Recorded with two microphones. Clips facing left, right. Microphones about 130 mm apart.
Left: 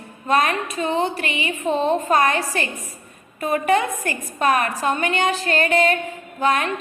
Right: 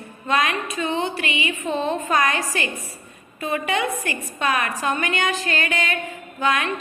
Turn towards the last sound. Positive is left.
turn(degrees=35)  # may be behind; listen again after turning